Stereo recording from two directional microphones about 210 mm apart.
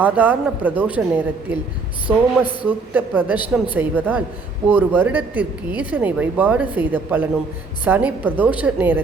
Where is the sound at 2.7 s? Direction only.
10° right (ahead or behind).